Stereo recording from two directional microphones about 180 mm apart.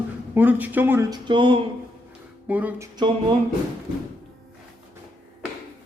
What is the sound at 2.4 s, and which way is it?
Music, 10° right (ahead or behind).